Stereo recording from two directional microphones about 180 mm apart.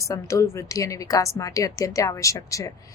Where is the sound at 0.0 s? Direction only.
15° left (ahead or behind).